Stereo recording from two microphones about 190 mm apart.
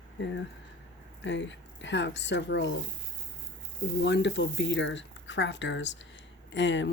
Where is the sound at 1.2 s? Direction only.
70° left (ahead or behind).